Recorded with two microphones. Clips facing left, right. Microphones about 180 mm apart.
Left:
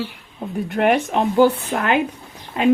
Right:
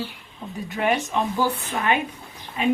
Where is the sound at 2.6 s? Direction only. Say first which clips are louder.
Left 6 dB; 85° left.